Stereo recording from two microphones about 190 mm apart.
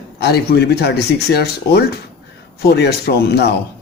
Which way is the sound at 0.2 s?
55° left (ahead or behind).